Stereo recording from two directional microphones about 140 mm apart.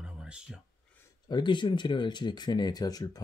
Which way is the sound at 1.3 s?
35° left (ahead or behind).